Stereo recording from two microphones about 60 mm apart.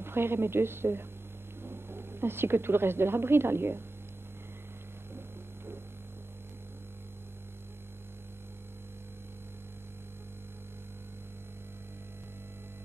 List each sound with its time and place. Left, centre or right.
0.0 s a woman's voice: right